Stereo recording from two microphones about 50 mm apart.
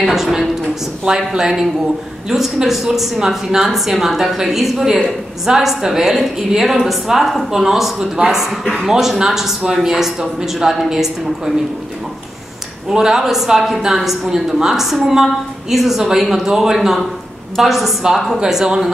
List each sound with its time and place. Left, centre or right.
0.0 s a woman's voice: centre
12.9 s a woman's voice: centre